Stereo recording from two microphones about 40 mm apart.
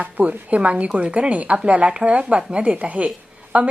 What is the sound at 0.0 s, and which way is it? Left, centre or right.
A woman's voice, right.